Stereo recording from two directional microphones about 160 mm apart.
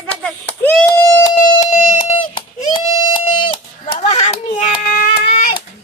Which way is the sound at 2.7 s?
30° left (ahead or behind).